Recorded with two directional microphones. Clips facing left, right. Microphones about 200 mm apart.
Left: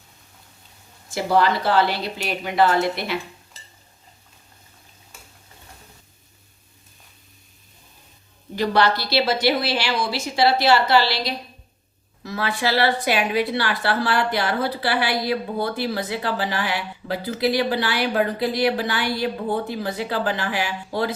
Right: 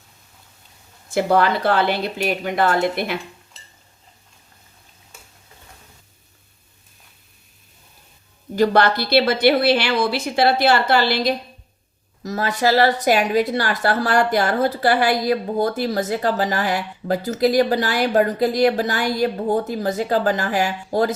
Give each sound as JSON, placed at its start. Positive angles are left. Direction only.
{"t": 1.1, "sound": "speech", "side_deg": -55}
{"t": 8.5, "sound": "a woman's voice", "side_deg": -50}